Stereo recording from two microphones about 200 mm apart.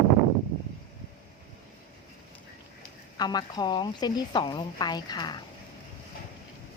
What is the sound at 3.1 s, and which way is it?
A woman's voice, 20° left (ahead or behind).